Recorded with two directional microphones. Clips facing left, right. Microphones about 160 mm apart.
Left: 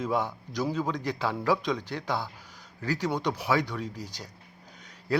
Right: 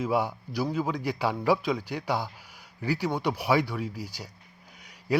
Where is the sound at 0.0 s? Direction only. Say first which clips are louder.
Right 2 dB; 10° right (ahead or behind).